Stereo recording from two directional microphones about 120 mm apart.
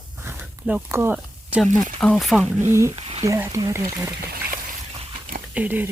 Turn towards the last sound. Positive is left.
turn(degrees=-15)  # may be behind; listen again after turning